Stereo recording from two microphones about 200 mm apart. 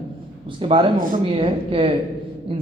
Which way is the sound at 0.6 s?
25° right (ahead or behind).